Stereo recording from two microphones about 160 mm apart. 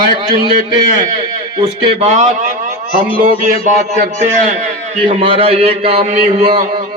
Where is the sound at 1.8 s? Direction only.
40° right (ahead or behind).